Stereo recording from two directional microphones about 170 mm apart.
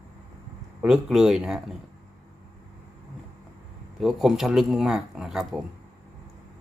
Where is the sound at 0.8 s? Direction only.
5° right (ahead or behind).